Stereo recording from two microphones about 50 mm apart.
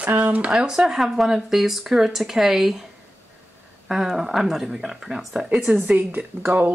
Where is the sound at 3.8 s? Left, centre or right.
Centre.